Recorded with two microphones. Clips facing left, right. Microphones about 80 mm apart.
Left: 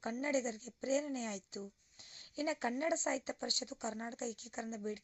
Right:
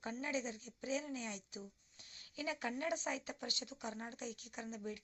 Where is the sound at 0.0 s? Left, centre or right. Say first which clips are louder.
Left 5 dB; left.